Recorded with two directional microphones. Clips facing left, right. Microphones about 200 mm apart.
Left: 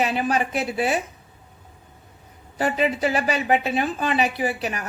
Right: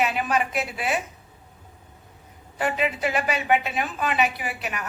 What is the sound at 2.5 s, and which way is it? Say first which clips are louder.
A woman's voice: left 3 dB; 35° left (ahead or behind).